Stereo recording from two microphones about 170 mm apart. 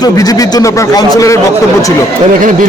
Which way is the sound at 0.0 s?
20° left (ahead or behind).